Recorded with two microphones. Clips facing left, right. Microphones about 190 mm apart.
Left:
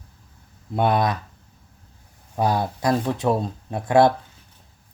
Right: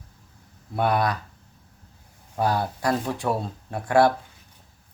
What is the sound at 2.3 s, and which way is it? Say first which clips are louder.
Speech: left 2 dB; 20° left (ahead or behind).